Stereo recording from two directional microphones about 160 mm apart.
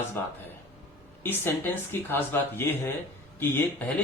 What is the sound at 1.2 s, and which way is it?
Speech, 15° left (ahead or behind).